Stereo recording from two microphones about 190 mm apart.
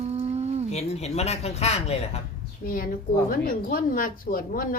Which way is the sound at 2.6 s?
50° left (ahead or behind).